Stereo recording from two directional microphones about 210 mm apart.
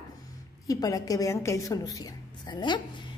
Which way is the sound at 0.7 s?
15° left (ahead or behind).